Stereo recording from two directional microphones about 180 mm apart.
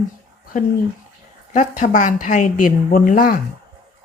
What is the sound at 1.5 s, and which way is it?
Speech, 45° left (ahead or behind).